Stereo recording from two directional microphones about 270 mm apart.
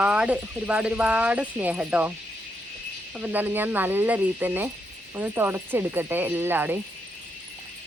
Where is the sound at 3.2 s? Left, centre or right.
Centre.